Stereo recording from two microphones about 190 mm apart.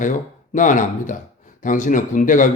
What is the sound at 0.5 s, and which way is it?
Speech, 45° left (ahead or behind).